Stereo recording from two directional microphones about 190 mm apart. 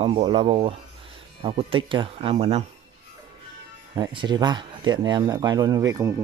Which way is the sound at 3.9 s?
25° right (ahead or behind).